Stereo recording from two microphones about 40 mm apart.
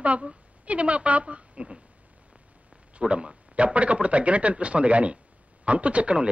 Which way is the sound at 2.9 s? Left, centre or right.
Right.